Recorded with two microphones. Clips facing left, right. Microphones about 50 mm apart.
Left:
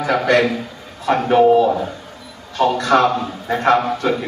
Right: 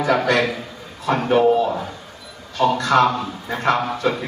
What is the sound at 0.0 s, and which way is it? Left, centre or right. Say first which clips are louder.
Speech: left 2 dB; left.